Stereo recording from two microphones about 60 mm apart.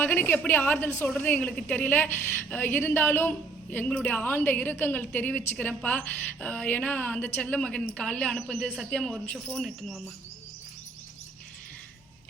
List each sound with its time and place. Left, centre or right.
0.0 s a woman's voice: left; by 8.9 s centre
8.9 s cricket: centre
9.2 s a woman's voice: centre
9.6 s cricket: centre